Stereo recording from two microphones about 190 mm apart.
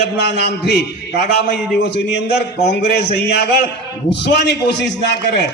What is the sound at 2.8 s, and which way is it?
A man's voice, 60° left (ahead or behind).